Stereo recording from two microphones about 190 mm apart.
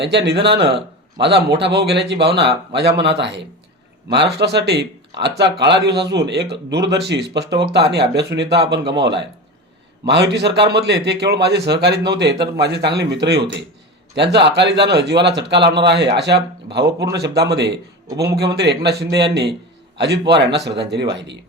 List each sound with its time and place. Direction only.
0.0 s speech: 65° right (ahead or behind)
0.5 s a man's voice: 30° right (ahead or behind)
1.2 s speech: 60° right (ahead or behind)